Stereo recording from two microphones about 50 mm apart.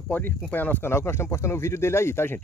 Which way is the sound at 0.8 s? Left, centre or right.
Left.